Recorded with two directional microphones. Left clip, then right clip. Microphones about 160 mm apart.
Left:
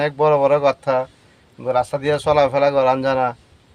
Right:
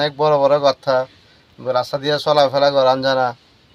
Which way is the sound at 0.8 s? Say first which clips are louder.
Right 2 dB; 10° left (ahead or behind).